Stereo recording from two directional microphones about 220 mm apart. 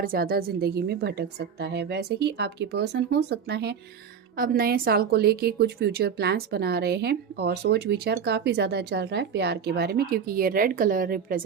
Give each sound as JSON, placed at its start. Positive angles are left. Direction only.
{"t": 0.0, "sound": "a woman's voice", "side_deg": -40}